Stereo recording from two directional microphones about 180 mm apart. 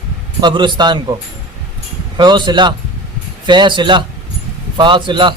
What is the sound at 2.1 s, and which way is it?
A man's voice, 25° right (ahead or behind).